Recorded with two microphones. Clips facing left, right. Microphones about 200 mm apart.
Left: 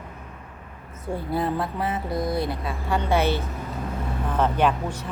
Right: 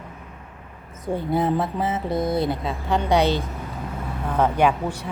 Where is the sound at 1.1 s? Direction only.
20° right (ahead or behind).